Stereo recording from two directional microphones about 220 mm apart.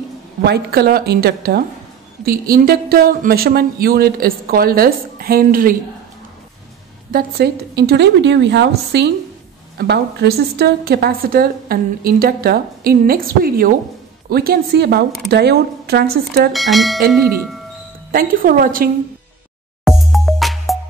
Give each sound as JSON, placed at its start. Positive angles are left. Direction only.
{"t": 0.4, "sound": "a woman's voice", "side_deg": -45}
{"t": 7.1, "sound": "a woman's voice", "side_deg": -40}
{"t": 16.5, "sound": "speech", "side_deg": 0}
{"t": 18.1, "sound": "speech", "side_deg": -40}
{"t": 19.8, "sound": "music", "side_deg": 0}